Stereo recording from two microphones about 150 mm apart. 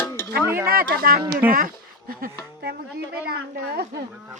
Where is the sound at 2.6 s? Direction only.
90° right.